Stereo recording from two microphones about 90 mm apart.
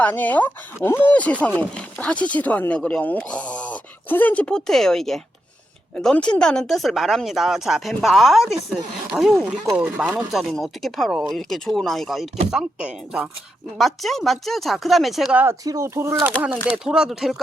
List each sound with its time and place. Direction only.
0.0 s speech: 20° left (ahead or behind); by 9.5 s 5° right (ahead or behind)
10.0 s speech: 15° right (ahead or behind)
10.3 s speech: centre (ahead or behind)
13.7 s speech: centre (ahead or behind)
15.6 s speech: 40° right (ahead or behind)
16.7 s speech: 10° right (ahead or behind)